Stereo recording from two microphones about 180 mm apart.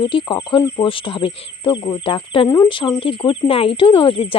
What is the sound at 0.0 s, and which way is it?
Speech, 25° left (ahead or behind).